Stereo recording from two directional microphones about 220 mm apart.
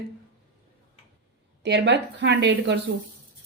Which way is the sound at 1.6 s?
50° right (ahead or behind).